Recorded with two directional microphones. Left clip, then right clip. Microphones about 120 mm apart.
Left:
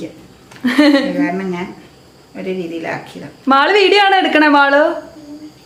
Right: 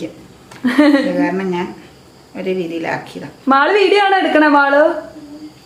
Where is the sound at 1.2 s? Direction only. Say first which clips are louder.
Right 1 dB; 15° right (ahead or behind).